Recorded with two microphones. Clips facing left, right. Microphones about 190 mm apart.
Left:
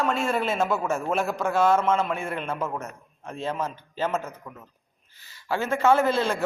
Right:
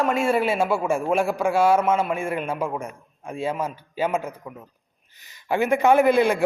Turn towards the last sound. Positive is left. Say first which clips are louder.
# right 5 dB
turn(degrees=-15)  # may be behind; listen again after turning